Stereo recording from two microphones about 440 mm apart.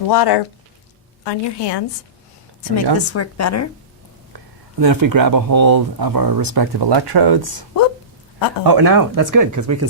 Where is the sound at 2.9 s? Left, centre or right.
Left.